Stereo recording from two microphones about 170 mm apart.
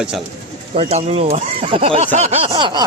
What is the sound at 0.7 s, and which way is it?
Speech, 35° right (ahead or behind).